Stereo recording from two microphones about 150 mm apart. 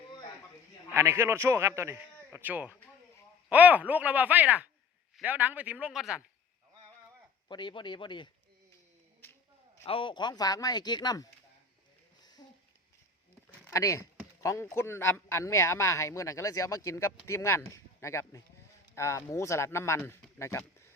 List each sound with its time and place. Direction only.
0.9 s a man's voice: 20° right (ahead or behind)
7.4 s a man's voice: 30° left (ahead or behind)
9.8 s a man's voice: 35° left (ahead or behind)
13.7 s a man's voice: 20° left (ahead or behind)